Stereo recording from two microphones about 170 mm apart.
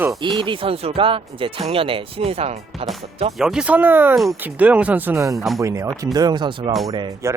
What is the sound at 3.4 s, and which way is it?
Speech, 5° right (ahead or behind).